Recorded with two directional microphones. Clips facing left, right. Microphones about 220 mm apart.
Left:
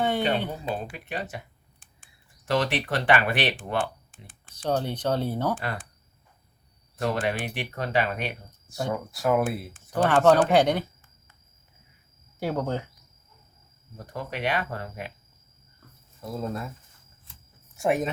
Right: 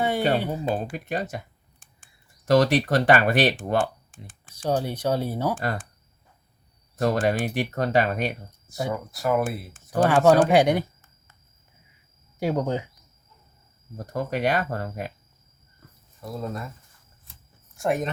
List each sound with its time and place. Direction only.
0.5 s speech: 45° right (ahead or behind)
2.5 s speech: 40° right (ahead or behind)
4.4 s speech: 10° right (ahead or behind)
5.5 s speech: 45° right (ahead or behind)
7.0 s speech: 40° right (ahead or behind)
8.7 s speech: centre (ahead or behind)
12.4 s speech: 15° right (ahead or behind)
13.9 s speech: 40° right (ahead or behind)
16.2 s speech: centre (ahead or behind)
17.7 s speech: 5° left (ahead or behind)